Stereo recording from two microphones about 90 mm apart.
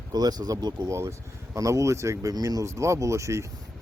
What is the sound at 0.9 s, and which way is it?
Speech, 35° right (ahead or behind).